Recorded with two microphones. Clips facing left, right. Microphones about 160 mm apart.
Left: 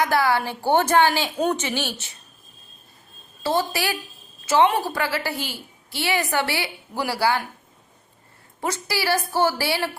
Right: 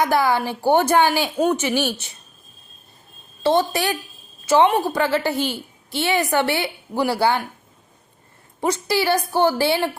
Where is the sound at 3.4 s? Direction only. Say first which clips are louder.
Right 5 dB; 20° right (ahead or behind).